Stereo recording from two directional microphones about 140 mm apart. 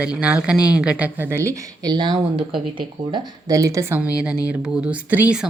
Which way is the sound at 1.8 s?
30° right (ahead or behind).